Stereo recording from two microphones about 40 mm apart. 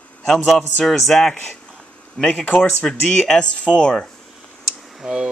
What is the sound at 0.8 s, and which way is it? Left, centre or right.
Speech, centre.